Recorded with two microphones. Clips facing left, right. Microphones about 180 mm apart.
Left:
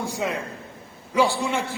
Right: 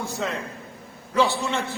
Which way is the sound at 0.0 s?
10° left (ahead or behind).